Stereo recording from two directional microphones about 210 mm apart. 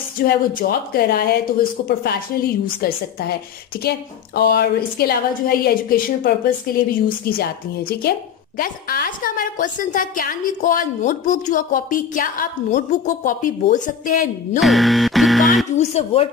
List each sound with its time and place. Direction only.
0.2 s a woman's voice: 45° left (ahead or behind)
4.4 s a woman's voice: 50° left (ahead or behind)
14.6 s music: centre (ahead or behind)
15.8 s speech: 30° left (ahead or behind)